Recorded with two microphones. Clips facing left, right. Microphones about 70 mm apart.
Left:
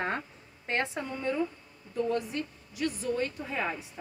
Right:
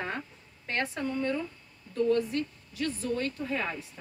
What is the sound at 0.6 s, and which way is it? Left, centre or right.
A woman's voice, left.